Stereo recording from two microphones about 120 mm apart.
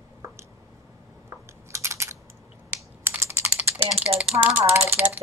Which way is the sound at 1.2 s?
25° right (ahead or behind).